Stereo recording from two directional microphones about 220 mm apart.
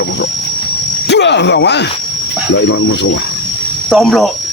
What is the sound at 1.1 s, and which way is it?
Speech, 50° left (ahead or behind).